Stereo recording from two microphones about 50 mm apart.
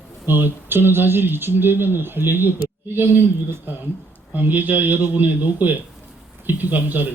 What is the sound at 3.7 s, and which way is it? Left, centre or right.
Speech, right.